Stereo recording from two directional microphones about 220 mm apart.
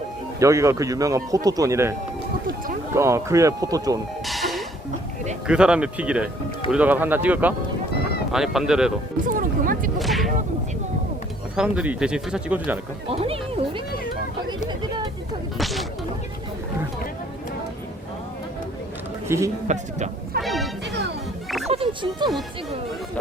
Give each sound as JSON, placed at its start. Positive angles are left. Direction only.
{"t": 0.3, "sound": "speech", "side_deg": -15}
{"t": 4.3, "sound": "music", "side_deg": 0}
{"t": 5.5, "sound": "speech", "side_deg": -5}
{"t": 9.2, "sound": "music", "side_deg": -40}
{"t": 10.0, "sound": "whip", "side_deg": 0}
{"t": 11.5, "sound": "speech", "side_deg": -5}
{"t": 13.1, "sound": "music", "side_deg": -25}
{"t": 14.7, "sound": "a sound", "side_deg": -20}
{"t": 15.5, "sound": "a sound", "side_deg": 0}
{"t": 19.3, "sound": "speech", "side_deg": -10}
{"t": 19.6, "sound": "a sound", "side_deg": -30}
{"t": 20.4, "sound": "music", "side_deg": 0}
{"t": 20.8, "sound": "music", "side_deg": -50}
{"t": 21.7, "sound": "music", "side_deg": -25}